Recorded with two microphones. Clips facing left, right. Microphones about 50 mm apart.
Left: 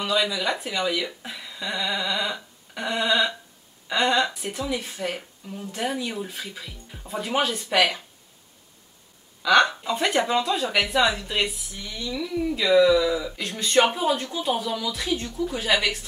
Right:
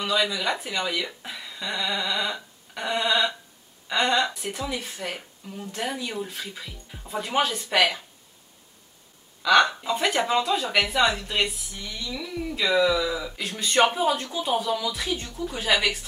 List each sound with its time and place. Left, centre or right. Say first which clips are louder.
0.0 s speech: left 1 dB; centre
9.4 s speech: even; centre